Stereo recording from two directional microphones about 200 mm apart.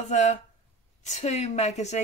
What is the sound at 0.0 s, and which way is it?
Speech, 35° left (ahead or behind).